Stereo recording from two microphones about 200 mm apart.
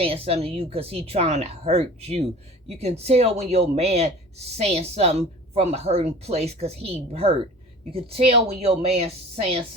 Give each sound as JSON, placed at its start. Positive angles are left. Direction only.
{"t": 0.0, "sound": "a woman's voice", "side_deg": -30}